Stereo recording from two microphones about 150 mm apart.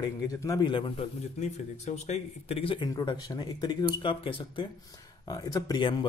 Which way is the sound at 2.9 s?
25° left (ahead or behind).